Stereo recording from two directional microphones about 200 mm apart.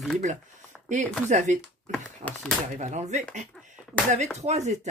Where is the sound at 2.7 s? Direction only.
35° right (ahead or behind).